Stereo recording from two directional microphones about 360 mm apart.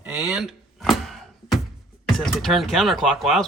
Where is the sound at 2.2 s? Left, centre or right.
Centre.